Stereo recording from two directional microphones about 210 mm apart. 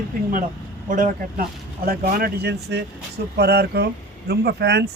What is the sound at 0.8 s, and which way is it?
Speech, 40° right (ahead or behind).